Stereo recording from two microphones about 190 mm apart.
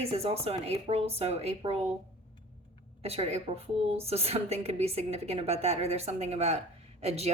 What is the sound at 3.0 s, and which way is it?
A woman's voice, 35° right (ahead or behind).